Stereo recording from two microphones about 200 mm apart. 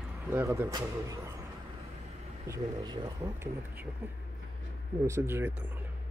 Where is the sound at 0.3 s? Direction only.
15° right (ahead or behind).